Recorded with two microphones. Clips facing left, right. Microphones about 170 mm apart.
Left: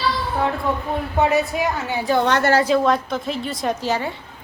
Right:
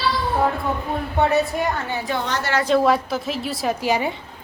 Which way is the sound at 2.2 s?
60° left (ahead or behind).